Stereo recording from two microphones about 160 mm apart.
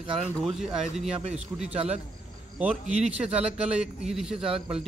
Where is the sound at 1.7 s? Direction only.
40° right (ahead or behind).